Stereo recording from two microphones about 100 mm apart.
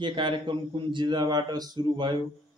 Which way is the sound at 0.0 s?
55° right (ahead or behind).